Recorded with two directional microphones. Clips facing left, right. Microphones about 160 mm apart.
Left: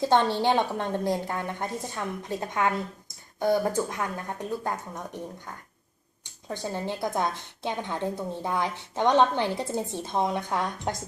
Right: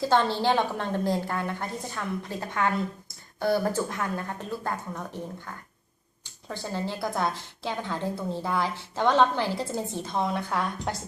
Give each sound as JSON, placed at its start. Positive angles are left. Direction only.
{"t": 0.0, "sound": "a woman's voice", "side_deg": 20}
{"t": 6.2, "sound": "a woman's voice", "side_deg": 15}